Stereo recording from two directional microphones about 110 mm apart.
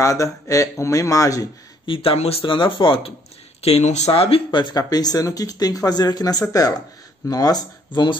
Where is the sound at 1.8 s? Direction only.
55° left (ahead or behind).